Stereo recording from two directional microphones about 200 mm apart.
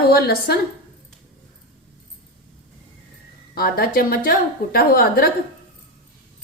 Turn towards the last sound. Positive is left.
turn(degrees=50)  # may be behind; listen again after turning